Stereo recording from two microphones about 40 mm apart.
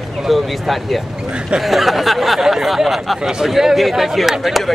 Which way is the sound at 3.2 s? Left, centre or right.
Centre.